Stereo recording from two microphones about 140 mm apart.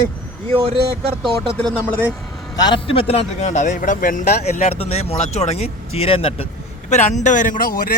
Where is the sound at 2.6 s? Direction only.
35° left (ahead or behind); by 4.6 s 70° left (ahead or behind).